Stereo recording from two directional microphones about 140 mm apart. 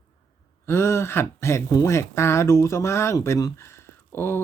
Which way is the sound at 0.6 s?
20° left (ahead or behind).